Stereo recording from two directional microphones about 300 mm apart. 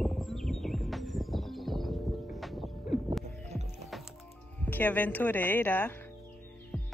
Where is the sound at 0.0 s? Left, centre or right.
Centre.